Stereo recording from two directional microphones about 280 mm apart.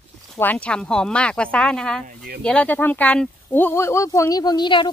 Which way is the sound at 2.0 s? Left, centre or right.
Right.